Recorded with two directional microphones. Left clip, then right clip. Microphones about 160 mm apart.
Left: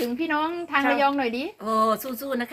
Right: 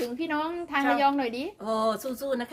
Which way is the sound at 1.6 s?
20° right (ahead or behind).